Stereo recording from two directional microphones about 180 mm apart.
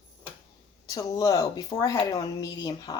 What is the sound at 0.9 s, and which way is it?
Speech, 20° left (ahead or behind).